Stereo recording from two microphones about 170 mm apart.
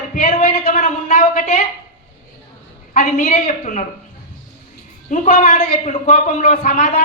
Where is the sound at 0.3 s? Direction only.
40° left (ahead or behind).